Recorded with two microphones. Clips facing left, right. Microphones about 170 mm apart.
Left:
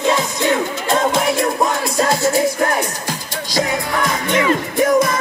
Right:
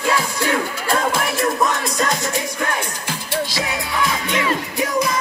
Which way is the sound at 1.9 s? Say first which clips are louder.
Left 6 dB; 35° left (ahead or behind).